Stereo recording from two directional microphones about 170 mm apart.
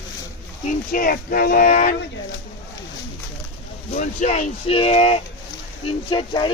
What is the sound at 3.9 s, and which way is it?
Speech, 45° left (ahead or behind).